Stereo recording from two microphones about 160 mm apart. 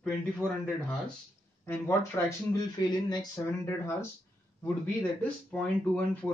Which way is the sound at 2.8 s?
25° left (ahead or behind).